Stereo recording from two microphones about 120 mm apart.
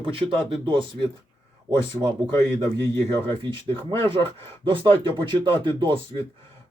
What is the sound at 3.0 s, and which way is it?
Speech, 50° right (ahead or behind).